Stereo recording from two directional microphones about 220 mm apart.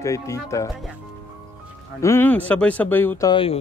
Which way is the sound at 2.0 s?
10° left (ahead or behind).